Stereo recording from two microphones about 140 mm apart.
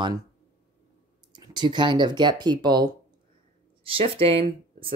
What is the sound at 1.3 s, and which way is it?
Speech, 30° right (ahead or behind).